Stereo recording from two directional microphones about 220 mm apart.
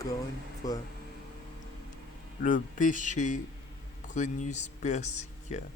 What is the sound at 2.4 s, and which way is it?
Speech, 35° left (ahead or behind).